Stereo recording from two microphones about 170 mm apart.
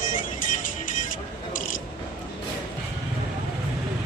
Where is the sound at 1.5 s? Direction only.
55° left (ahead or behind).